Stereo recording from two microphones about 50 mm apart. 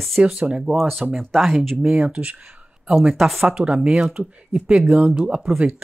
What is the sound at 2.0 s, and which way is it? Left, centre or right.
Speech, right.